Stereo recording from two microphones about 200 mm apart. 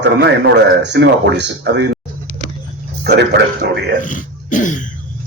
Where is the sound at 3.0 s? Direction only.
55° right (ahead or behind).